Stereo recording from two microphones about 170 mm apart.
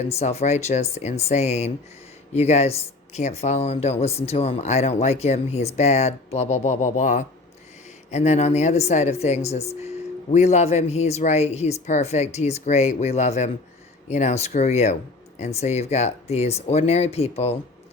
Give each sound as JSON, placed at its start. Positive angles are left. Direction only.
{"t": 0.0, "sound": "speech", "side_deg": 40}